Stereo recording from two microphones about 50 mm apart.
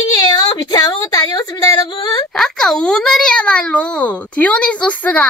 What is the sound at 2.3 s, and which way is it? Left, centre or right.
A child's voice, centre.